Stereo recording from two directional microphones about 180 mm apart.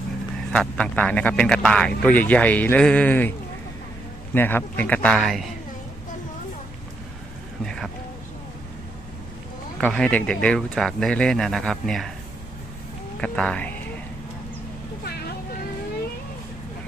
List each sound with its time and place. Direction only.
0.5 s a man's voice: 5° left (ahead or behind)
7.6 s boat: 5° left (ahead or behind)
9.8 s speech: 5° left (ahead or behind)
13.2 s a man's voice: 5° left (ahead or behind)